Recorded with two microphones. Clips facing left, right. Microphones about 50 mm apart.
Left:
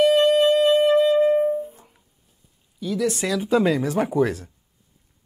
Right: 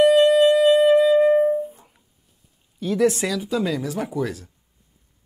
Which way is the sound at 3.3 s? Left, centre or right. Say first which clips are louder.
Left 4 dB; left.